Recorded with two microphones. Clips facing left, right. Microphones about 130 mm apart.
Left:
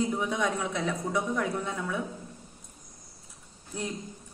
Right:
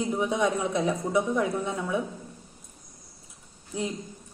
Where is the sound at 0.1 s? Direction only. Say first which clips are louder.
Right 4 dB; 20° right (ahead or behind).